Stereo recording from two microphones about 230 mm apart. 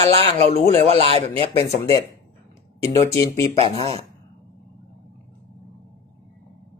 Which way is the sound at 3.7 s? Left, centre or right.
Right.